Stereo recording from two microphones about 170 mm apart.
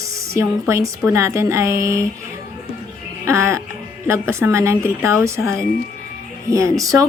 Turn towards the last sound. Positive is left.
turn(degrees=-20)  # may be behind; listen again after turning